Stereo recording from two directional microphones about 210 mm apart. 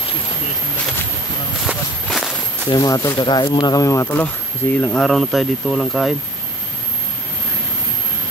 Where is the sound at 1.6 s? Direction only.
Centre (ahead or behind).